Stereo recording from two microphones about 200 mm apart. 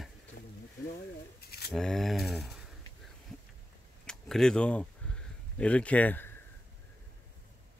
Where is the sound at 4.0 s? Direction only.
5° left (ahead or behind).